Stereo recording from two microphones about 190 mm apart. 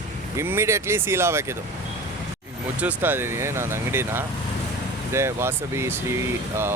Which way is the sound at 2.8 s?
10° right (ahead or behind).